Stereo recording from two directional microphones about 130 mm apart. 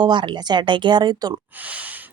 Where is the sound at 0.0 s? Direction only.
35° right (ahead or behind).